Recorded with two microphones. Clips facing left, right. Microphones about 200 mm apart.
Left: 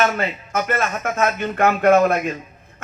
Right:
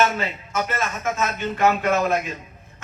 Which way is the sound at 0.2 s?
55° left (ahead or behind).